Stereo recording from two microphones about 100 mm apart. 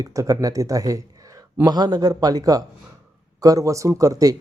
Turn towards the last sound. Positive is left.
turn(degrees=-35)  # may be behind; listen again after turning